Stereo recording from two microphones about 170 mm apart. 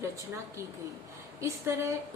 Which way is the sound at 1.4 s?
15° right (ahead or behind).